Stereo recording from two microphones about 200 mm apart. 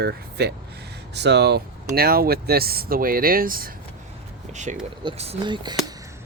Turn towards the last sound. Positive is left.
turn(degrees=-20)  # may be behind; listen again after turning